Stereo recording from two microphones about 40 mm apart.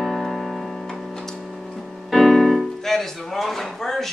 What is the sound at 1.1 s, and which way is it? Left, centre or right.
Music, centre.